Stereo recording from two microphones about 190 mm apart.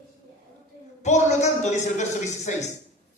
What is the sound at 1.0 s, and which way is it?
A man's voice, 35° left (ahead or behind).